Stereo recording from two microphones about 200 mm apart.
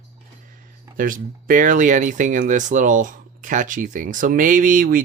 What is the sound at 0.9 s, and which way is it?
Speech, 45° right (ahead or behind).